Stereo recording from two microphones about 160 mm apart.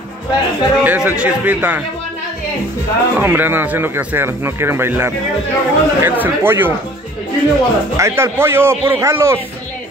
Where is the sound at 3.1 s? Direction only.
10° right (ahead or behind).